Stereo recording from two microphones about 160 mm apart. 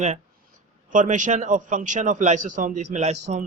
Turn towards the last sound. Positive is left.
turn(degrees=-45)  # may be behind; listen again after turning